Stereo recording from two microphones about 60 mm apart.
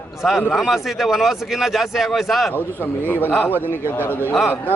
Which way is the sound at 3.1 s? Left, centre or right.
Left.